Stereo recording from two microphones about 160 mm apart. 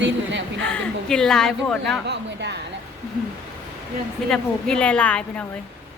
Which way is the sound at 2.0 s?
90° right.